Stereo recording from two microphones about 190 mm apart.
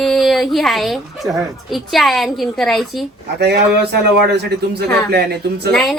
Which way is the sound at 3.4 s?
60° right (ahead or behind).